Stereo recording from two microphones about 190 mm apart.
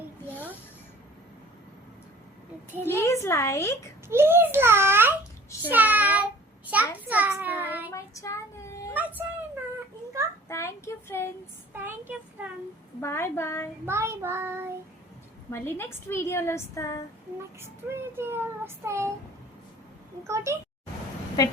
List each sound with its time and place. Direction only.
2.8 s a woman's voice: 15° left (ahead or behind)
4.1 s a child's voice: 10° right (ahead or behind)
5.6 s child singing: 10° right (ahead or behind)
7.9 s child singing: 15° left (ahead or behind)
8.9 s a sound: 10° right (ahead or behind)
10.5 s a sound: 15° left (ahead or behind)
11.7 s a sound: 10° right (ahead or behind)
13.0 s a woman's voice: 10° left (ahead or behind)
13.8 s a child's voice: 15° right (ahead or behind)
15.4 s a woman's voice: 15° left (ahead or behind)
17.6 s a child's voice: 10° right (ahead or behind)
20.2 s a child's voice: 15° right (ahead or behind)